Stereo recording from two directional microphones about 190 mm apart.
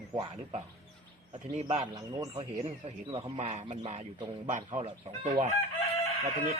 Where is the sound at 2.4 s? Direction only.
35° right (ahead or behind).